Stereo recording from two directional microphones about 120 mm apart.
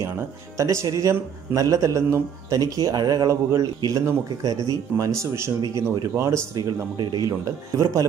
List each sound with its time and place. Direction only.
0.6 s a man's voice: 25° right (ahead or behind)